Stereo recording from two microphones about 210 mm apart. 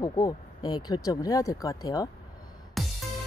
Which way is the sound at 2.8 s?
Centre (ahead or behind).